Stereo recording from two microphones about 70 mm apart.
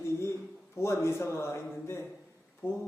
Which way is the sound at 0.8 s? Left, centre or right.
Left.